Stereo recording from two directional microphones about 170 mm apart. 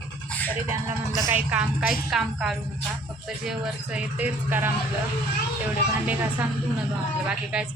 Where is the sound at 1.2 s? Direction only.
10° right (ahead or behind).